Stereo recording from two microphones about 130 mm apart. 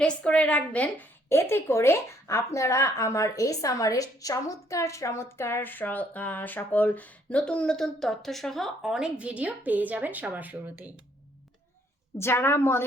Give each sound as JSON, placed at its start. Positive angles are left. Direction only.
{"t": 0.0, "sound": "a woman's voice", "side_deg": 10}
{"t": 12.1, "sound": "a woman's voice", "side_deg": 20}